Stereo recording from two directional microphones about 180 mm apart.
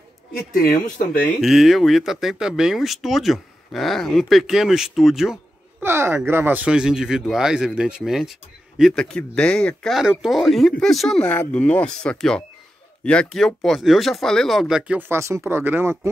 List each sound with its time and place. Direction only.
0.5 s speech: 50° left (ahead or behind)
1.4 s speech: centre (ahead or behind)
5.9 s speech: 15° right (ahead or behind)